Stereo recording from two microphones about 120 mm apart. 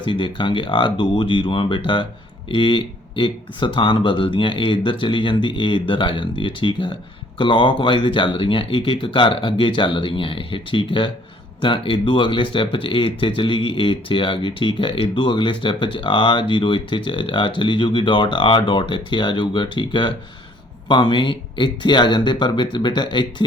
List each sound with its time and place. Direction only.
0.0 s speech: 40° left (ahead or behind)